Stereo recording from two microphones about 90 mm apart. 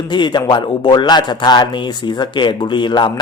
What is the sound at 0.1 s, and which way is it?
Speech, 55° left (ahead or behind).